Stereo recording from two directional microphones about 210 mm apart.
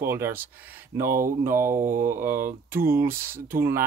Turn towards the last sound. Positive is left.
turn(degrees=-10)  # may be behind; listen again after turning